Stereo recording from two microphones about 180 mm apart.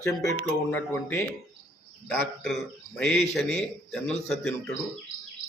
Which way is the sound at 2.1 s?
Centre (ahead or behind).